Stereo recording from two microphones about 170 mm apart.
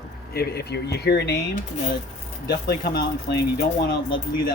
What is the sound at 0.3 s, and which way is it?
Speech, 70° left (ahead or behind).